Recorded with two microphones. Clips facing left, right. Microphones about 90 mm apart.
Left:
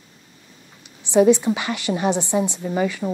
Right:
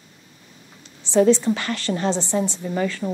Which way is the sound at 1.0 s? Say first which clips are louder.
Left 1 dB; 15° left (ahead or behind).